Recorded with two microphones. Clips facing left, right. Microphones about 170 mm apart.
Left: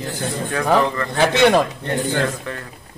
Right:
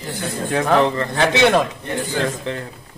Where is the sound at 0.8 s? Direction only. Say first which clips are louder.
Right 2 dB; 20° right (ahead or behind).